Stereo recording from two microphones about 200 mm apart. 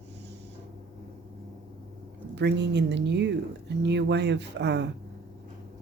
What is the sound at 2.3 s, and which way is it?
Speech, 60° right (ahead or behind).